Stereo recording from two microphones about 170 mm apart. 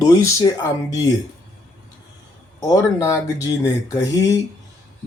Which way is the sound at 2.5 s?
20° left (ahead or behind).